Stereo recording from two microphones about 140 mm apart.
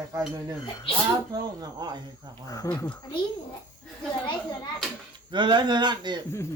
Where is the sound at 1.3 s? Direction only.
30° right (ahead or behind).